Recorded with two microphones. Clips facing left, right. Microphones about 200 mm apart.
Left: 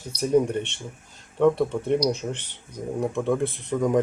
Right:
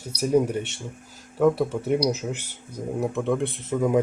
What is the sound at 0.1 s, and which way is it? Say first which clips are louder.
Speech: even; 10° right (ahead or behind).